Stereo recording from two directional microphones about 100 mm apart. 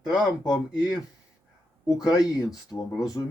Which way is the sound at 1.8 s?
35° left (ahead or behind).